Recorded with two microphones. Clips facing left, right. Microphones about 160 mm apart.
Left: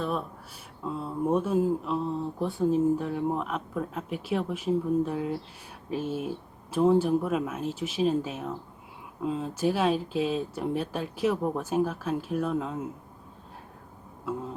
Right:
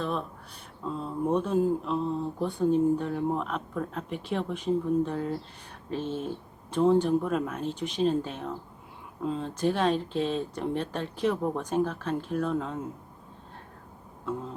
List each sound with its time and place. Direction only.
0.0 s a sound: 5° left (ahead or behind)
0.9 s speech: 5° left (ahead or behind)
14.3 s speech: 5° left (ahead or behind)